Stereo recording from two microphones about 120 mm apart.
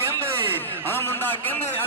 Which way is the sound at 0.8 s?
20° left (ahead or behind).